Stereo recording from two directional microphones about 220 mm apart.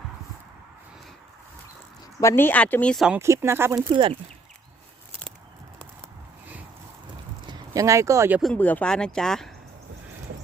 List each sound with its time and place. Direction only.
2.2 s speech: 10° left (ahead or behind)
3.2 s speech: 10° right (ahead or behind)
3.9 s speech: 25° right (ahead or behind)
7.4 s speech: 15° right (ahead or behind)
8.4 s speech: 5° left (ahead or behind)